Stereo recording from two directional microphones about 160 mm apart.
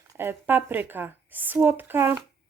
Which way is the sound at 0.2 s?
15° right (ahead or behind).